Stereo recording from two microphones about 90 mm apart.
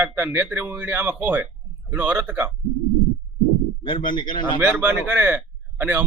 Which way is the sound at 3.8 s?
65° left (ahead or behind).